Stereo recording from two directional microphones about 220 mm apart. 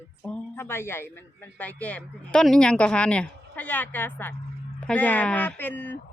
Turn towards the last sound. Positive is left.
turn(degrees=10)  # may be behind; listen again after turning